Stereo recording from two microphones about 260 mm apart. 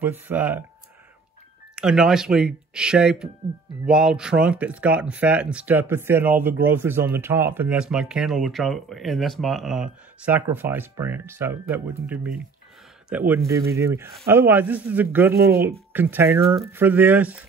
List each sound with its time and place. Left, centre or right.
0.0 s speech: centre
1.8 s speech: centre